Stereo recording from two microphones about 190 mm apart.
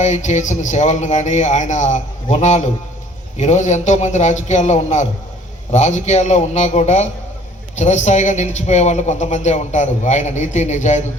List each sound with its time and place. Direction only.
0.0 s speech: 40° left (ahead or behind)